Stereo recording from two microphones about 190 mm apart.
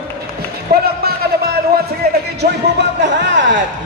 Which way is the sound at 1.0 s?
55° right (ahead or behind).